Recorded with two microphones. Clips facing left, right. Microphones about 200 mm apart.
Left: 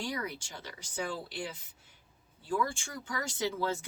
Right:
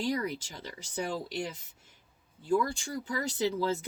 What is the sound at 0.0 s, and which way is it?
Speech, 40° right (ahead or behind).